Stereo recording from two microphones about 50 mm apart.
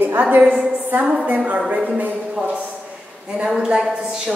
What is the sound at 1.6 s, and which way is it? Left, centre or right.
A woman's voice, right.